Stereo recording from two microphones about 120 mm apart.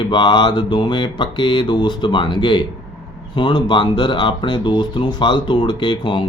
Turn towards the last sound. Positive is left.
turn(degrees=40)  # may be behind; listen again after turning